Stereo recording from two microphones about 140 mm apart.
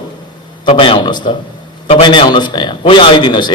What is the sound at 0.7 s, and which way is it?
A man's voice, 40° left (ahead or behind).